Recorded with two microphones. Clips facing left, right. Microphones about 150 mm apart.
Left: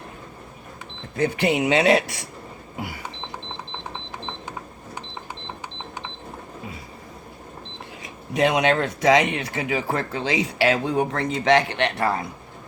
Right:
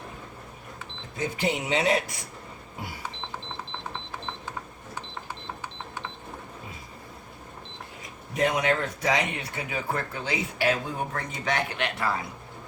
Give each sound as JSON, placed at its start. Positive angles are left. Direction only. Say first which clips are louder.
{"t": 1.1, "sound": "speech", "louder": "left 7 dB", "side_deg": 65}
{"t": 2.7, "sound": "a sound", "louder": "left 6 dB", "side_deg": 80}
{"t": 8.0, "sound": "speech", "louder": "left 5 dB", "side_deg": 85}